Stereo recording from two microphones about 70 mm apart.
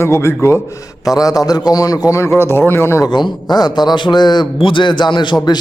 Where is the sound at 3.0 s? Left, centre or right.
Left.